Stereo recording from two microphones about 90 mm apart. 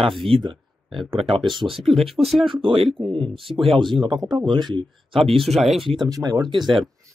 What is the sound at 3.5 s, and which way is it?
Speech, 60° right (ahead or behind).